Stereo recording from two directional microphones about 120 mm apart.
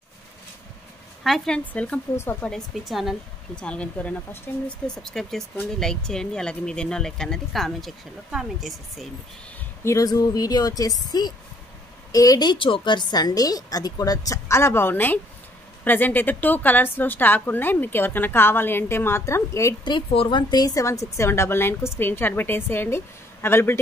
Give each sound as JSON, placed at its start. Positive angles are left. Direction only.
{"t": 1.2, "sound": "a woman's voice", "side_deg": 5}
{"t": 2.5, "sound": "speech", "side_deg": 0}
{"t": 3.6, "sound": "speech", "side_deg": 10}
{"t": 9.8, "sound": "a woman's voice", "side_deg": 30}
{"t": 19.8, "sound": "a woman's voice", "side_deg": 45}